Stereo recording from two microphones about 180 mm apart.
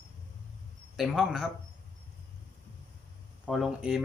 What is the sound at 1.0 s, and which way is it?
Speech, centre (ahead or behind).